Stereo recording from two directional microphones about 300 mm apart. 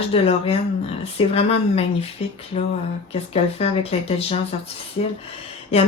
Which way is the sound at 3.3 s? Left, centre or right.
Centre.